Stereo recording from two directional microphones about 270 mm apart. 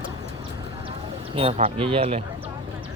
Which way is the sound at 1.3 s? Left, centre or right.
Right.